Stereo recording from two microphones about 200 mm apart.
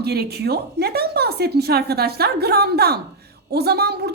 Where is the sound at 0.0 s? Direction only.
55° right (ahead or behind).